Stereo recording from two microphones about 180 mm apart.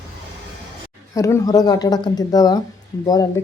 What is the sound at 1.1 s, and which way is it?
Speech, 15° left (ahead or behind).